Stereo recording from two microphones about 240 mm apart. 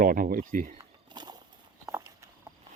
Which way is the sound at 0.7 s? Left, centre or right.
Centre.